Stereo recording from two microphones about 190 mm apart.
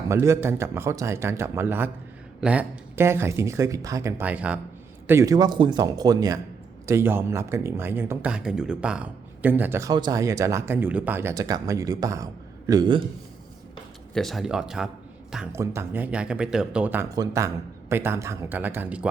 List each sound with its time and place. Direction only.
0.1 s a man's voice: 15° right (ahead or behind)
14.1 s speech: centre (ahead or behind)
15.5 s speech: 15° right (ahead or behind)